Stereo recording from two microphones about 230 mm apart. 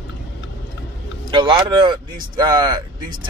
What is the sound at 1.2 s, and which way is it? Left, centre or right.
Speech, centre.